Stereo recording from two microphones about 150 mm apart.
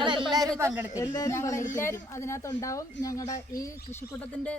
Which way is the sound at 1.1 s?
20° left (ahead or behind).